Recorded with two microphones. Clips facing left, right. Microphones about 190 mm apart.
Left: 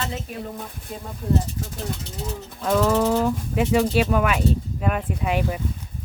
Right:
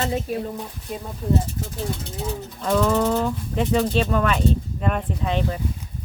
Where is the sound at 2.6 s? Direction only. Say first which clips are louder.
Even; 5° left (ahead or behind).